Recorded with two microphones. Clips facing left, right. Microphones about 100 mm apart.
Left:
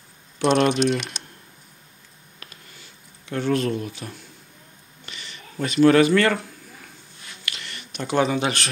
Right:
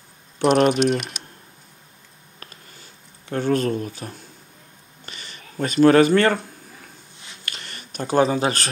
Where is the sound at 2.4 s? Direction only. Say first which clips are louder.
Right 2 dB; 40° right (ahead or behind).